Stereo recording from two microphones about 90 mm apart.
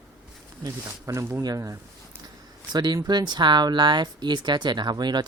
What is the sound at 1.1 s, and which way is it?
Speech, 40° right (ahead or behind).